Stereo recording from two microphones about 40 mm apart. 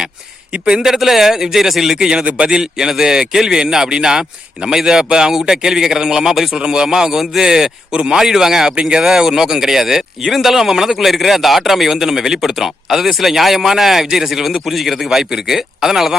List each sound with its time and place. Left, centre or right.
0.5 s speech: right
0.8 s speech: centre
6.5 s speech: right
7.9 s speech: right
8.2 s speech: centre
8.7 s a man's voice: right